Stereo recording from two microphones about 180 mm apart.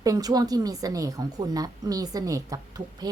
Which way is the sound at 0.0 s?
20° right (ahead or behind).